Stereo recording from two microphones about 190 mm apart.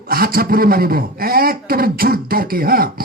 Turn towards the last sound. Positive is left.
turn(degrees=-50)  # may be behind; listen again after turning